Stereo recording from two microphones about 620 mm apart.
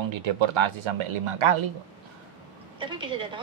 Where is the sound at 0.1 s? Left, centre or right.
Right.